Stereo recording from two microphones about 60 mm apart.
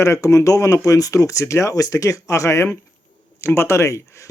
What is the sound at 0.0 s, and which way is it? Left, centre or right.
Speech, left.